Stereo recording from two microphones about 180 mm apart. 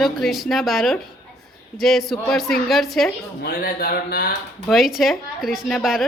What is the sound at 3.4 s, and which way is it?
Speech, 55° left (ahead or behind).